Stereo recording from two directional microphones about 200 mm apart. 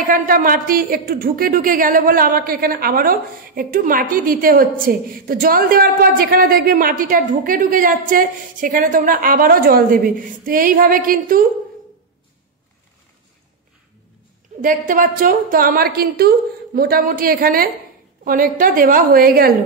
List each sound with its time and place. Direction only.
0.1 s a woman's voice: 45° right (ahead or behind)
14.6 s a woman's voice: 40° right (ahead or behind)